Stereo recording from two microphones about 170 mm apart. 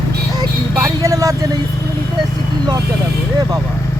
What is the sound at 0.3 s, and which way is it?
Vehicle, 20° right (ahead or behind).